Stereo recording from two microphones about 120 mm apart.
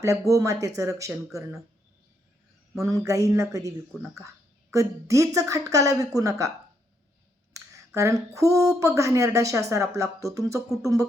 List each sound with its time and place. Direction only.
0.0 s speech: 25° right (ahead or behind)
2.7 s speech: 30° right (ahead or behind)
3.9 s speech: 5° right (ahead or behind)
4.7 s speech: 25° right (ahead or behind)
7.5 s a sound: 25° right (ahead or behind)
8.8 s speech: 25° right (ahead or behind)